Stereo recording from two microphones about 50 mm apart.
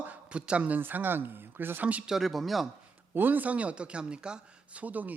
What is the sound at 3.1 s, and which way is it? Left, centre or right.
Speech, right.